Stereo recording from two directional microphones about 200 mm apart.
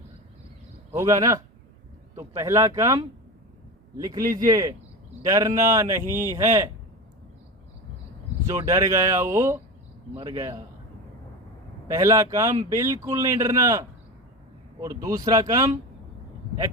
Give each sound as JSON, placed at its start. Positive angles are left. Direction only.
{"t": 0.9, "sound": "speech", "side_deg": -15}
{"t": 8.4, "sound": "speech", "side_deg": -15}
{"t": 11.9, "sound": "speech", "side_deg": -15}